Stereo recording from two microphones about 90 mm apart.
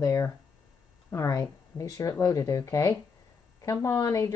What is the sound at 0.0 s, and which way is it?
A woman's voice, 35° left (ahead or behind).